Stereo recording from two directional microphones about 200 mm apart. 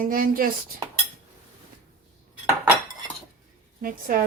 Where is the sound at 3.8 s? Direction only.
45° right (ahead or behind).